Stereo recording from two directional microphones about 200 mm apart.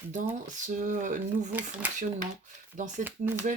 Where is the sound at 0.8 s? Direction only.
40° right (ahead or behind).